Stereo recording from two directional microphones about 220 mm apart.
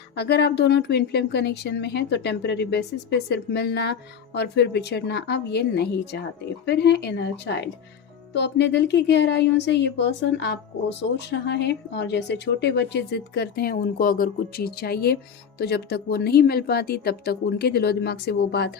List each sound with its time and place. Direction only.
0.2 s a woman's voice: 50° left (ahead or behind)